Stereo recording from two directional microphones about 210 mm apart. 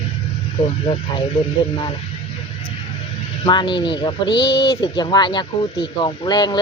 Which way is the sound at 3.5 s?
20° left (ahead or behind).